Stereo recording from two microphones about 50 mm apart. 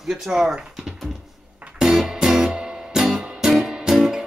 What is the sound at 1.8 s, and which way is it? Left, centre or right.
Music, centre.